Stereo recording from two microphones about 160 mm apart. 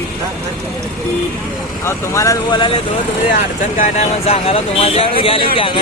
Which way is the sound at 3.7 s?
45° left (ahead or behind).